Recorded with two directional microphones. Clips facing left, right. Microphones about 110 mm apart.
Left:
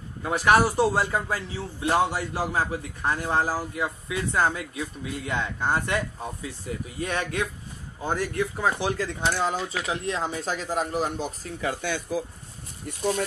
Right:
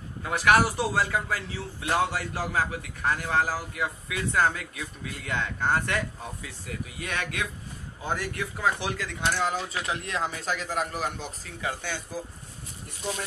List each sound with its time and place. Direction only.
0.2 s a man's voice: 25° left (ahead or behind); by 12.2 s 55° left (ahead or behind)